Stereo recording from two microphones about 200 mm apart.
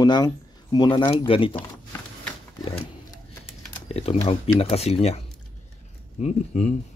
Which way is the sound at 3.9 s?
30° left (ahead or behind).